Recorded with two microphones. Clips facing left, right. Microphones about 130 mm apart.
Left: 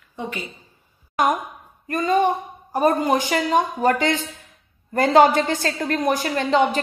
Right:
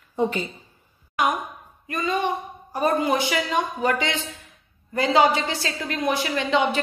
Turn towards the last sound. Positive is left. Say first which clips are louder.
# left 3 dB
turn(degrees=45)  # may be behind; listen again after turning